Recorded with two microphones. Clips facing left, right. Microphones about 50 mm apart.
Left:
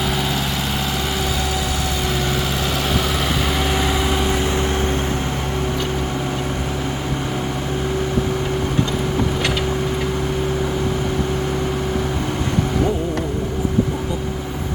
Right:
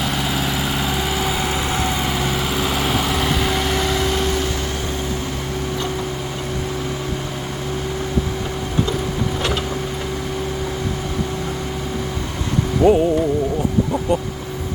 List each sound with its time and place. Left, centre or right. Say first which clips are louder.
3.4 s vehicle: even; centre
12.9 s music: right 8 dB; right